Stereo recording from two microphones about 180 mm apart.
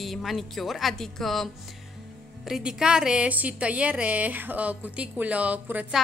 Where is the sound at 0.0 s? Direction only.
Centre (ahead or behind).